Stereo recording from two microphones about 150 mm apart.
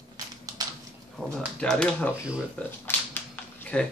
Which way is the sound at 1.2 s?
10° right (ahead or behind).